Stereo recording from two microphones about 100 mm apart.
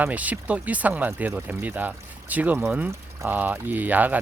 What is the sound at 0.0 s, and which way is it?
Speech, 15° right (ahead or behind).